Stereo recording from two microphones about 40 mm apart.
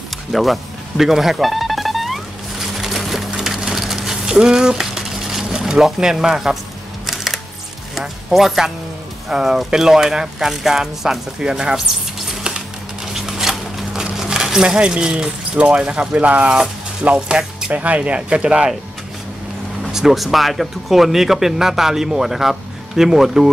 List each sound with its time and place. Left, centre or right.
0.3 s music: centre
5.5 s a sound: centre
5.9 s speech: centre
8.0 s speech: centre
13.0 s a sound: centre
15.0 s speech: right
15.8 s speech: right
17.1 s speech: centre
17.7 s speech: right
19.9 s speech: centre